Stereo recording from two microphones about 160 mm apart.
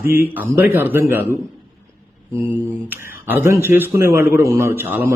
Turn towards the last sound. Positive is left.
turn(degrees=-10)  # may be behind; listen again after turning